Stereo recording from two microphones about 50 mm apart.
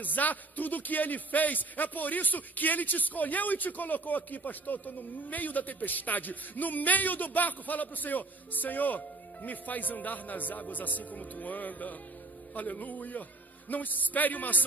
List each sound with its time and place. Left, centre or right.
0.0 s speech: left